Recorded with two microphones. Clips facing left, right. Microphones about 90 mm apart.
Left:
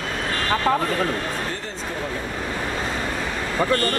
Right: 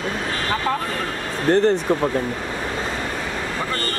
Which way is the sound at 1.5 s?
65° right (ahead or behind).